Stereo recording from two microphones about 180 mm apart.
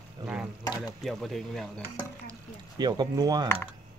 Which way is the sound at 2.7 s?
25° right (ahead or behind).